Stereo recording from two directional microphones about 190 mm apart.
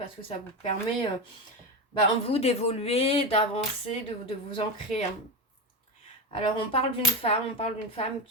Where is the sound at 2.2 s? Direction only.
30° left (ahead or behind).